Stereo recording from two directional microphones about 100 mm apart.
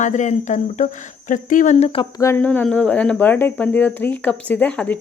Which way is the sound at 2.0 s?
55° left (ahead or behind).